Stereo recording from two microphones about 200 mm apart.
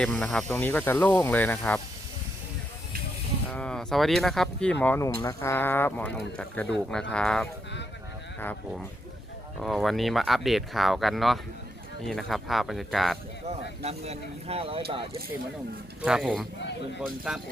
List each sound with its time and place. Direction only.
0.0 s speech: centre (ahead or behind)
3.5 s speech: 5° left (ahead or behind)
13.8 s speech: 30° right (ahead or behind)
16.0 s speech: centre (ahead or behind)